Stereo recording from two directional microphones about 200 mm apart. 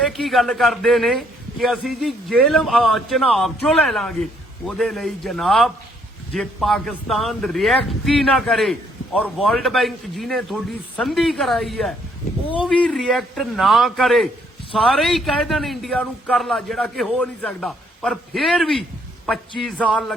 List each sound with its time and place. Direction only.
0.0 s a man's voice: centre (ahead or behind)